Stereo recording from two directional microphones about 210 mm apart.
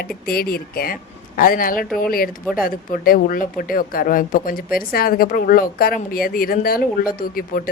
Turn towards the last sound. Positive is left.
turn(degrees=45)  # may be behind; listen again after turning